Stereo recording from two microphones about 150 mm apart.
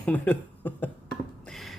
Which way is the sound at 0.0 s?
10° left (ahead or behind).